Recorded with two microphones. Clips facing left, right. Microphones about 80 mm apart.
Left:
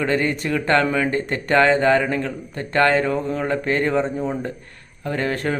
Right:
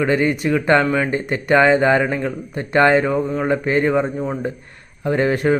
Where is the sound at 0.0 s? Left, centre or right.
Centre.